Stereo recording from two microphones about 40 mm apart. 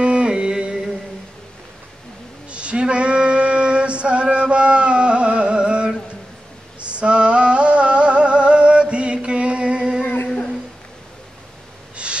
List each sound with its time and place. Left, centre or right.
0.0 s music: right
2.5 s male singing: right
6.8 s a sound: right